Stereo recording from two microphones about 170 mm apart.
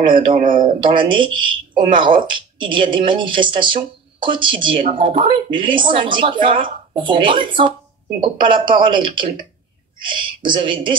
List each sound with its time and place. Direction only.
0.1 s speech: 50° right (ahead or behind)
0.7 s speech: 30° right (ahead or behind)